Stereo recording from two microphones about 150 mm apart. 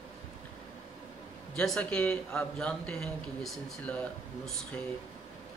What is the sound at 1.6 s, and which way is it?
A man's voice, 5° left (ahead or behind).